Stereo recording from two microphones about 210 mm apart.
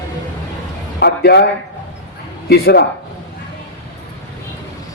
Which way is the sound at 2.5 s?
50° left (ahead or behind).